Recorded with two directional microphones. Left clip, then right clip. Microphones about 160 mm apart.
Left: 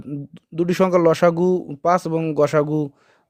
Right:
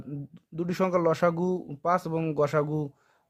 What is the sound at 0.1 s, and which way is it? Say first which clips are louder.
A man's voice: left 10 dB; 40° left (ahead or behind).